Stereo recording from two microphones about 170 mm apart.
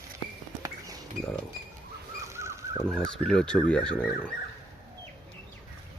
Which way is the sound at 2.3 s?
15° right (ahead or behind).